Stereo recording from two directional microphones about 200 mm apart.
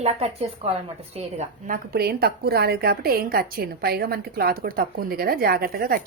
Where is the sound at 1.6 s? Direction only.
50° right (ahead or behind).